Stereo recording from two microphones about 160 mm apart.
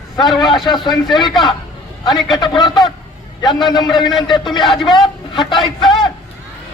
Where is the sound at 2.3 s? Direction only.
25° left (ahead or behind).